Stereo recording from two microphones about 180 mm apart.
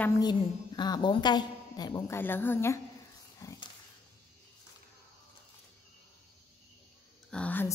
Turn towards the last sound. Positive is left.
turn(degrees=10)  # may be behind; listen again after turning